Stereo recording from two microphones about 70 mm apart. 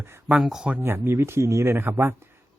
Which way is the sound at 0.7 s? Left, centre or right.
Right.